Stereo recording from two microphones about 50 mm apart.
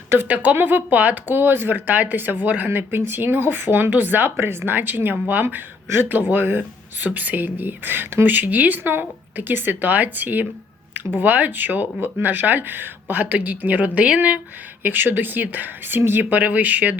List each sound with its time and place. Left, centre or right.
0.5 s speech: right
2.6 s speech: right
14.8 s speech: right